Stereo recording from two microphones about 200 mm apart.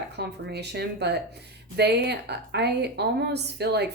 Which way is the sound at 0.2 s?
55° right (ahead or behind).